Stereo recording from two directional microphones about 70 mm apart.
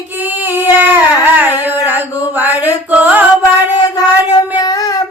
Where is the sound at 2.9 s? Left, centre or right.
Right.